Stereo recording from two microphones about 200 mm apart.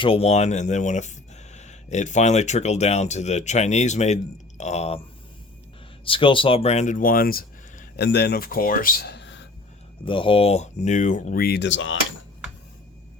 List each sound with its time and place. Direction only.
0.0 s speech: 30° left (ahead or behind)
6.1 s speech: 25° left (ahead or behind); by 9.5 s 60° left (ahead or behind)
10.1 s speech: 25° left (ahead or behind); by 11.9 s 70° left (ahead or behind)